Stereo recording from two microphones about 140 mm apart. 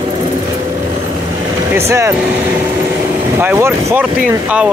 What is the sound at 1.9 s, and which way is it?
Speech, 20° right (ahead or behind).